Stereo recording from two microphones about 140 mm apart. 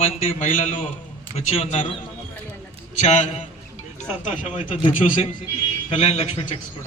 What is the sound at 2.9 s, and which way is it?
Speech, 50° left (ahead or behind).